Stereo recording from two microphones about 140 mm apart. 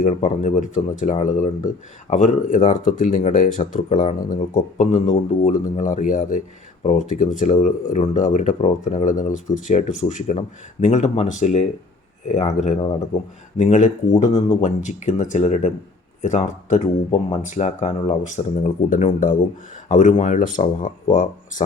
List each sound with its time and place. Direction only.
0.2 s a man's voice: 60° left (ahead or behind)